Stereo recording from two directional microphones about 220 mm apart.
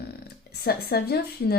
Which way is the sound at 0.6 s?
45° left (ahead or behind).